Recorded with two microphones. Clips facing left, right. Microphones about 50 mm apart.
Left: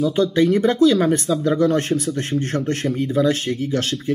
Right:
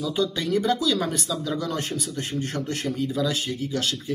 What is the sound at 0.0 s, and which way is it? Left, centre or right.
Speech, left.